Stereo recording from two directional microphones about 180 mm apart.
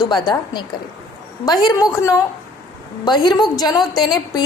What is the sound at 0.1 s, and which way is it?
A woman's voice, 25° left (ahead or behind).